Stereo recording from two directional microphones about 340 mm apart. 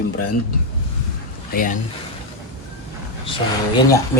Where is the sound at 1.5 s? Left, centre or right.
Left.